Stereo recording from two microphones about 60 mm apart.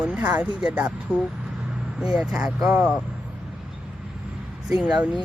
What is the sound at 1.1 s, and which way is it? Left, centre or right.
Speech, centre.